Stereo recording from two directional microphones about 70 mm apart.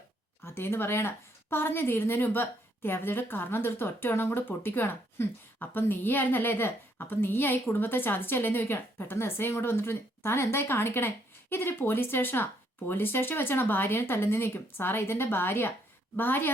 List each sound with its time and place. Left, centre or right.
0.4 s a woman's voice: left